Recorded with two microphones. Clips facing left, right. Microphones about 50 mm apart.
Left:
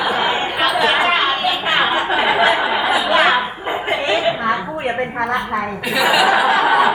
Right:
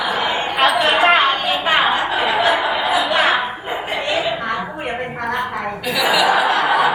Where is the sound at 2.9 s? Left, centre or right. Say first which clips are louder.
Left 2 dB; centre.